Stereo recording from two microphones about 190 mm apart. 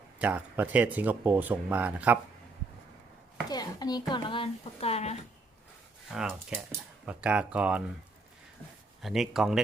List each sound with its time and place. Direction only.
0.2 s speech: 5° right (ahead or behind)
3.5 s a sound: 20° left (ahead or behind)
4.1 s speech: 25° left (ahead or behind)
6.1 s speech: 5° right (ahead or behind)
9.0 s speech: centre (ahead or behind)